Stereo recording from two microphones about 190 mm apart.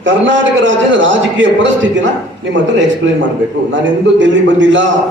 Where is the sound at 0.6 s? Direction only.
75° right (ahead or behind).